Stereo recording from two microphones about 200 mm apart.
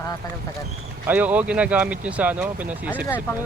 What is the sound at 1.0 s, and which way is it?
Speech, 10° right (ahead or behind).